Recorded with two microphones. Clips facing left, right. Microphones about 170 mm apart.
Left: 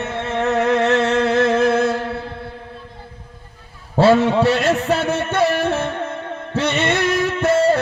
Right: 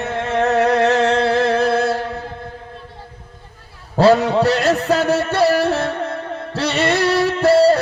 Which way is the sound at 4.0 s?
40° right (ahead or behind).